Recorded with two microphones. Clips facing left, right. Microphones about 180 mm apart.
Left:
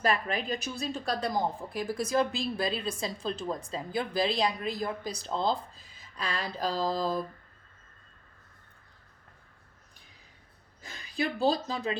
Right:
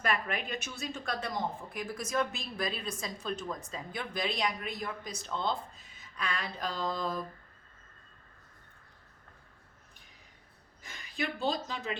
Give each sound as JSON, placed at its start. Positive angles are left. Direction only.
{"t": 0.0, "sound": "speech", "side_deg": 30}
{"t": 10.8, "sound": "speech", "side_deg": 35}